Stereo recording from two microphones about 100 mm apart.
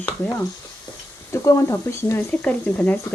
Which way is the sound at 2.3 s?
15° left (ahead or behind).